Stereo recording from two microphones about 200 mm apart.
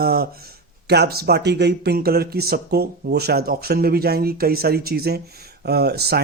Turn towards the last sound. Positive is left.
turn(degrees=-55)  # may be behind; listen again after turning